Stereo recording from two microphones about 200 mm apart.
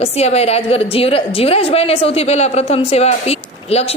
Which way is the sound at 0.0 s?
30° left (ahead or behind).